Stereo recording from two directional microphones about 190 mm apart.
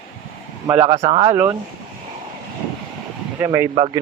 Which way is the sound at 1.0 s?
30° right (ahead or behind).